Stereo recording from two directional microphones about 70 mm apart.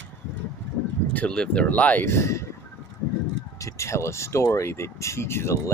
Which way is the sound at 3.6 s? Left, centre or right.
Left.